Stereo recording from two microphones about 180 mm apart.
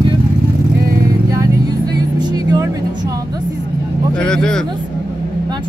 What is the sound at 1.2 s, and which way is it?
Music, 20° right (ahead or behind).